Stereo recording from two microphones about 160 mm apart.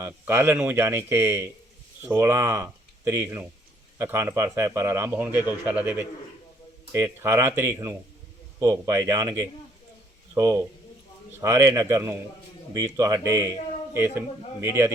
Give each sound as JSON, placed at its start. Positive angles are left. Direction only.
{"t": 0.0, "sound": "speech", "side_deg": -15}